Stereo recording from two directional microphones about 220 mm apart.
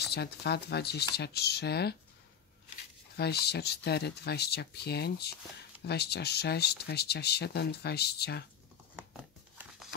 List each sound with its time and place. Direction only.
0.0 s speech: 50° left (ahead or behind)
3.2 s speech: 50° left (ahead or behind)